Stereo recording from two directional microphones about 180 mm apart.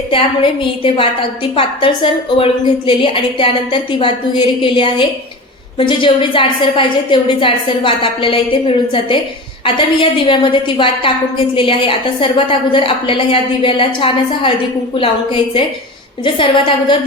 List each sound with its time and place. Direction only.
0.8 s a woman's voice: 30° left (ahead or behind)